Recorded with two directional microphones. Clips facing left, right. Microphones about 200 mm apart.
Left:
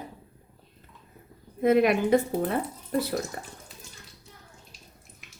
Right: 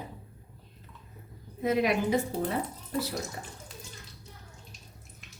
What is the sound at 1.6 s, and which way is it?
Speech, 55° left (ahead or behind).